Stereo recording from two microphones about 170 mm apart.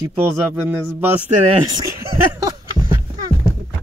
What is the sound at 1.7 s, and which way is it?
Speech, 20° right (ahead or behind).